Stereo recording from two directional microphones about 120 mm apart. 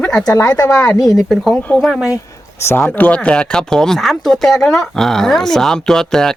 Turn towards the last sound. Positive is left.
turn(degrees=5)  # may be behind; listen again after turning